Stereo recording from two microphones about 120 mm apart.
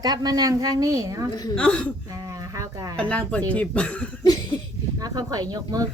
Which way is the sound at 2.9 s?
10° left (ahead or behind).